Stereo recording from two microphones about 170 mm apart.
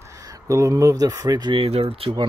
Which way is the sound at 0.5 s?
20° right (ahead or behind).